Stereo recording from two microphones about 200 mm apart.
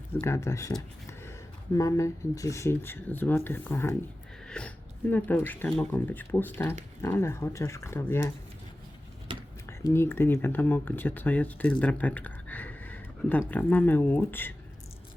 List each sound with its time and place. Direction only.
0.1 s speech: 15° left (ahead or behind)
9.3 s a sound: 25° right (ahead or behind)
9.6 s speech: 10° left (ahead or behind)